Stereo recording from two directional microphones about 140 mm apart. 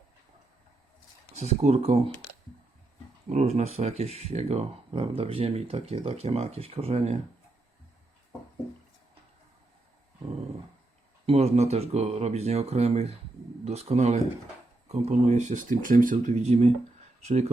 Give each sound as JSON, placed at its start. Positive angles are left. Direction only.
{"t": 1.4, "sound": "speech", "side_deg": -55}
{"t": 3.2, "sound": "speech", "side_deg": -55}
{"t": 11.3, "sound": "speech", "side_deg": -50}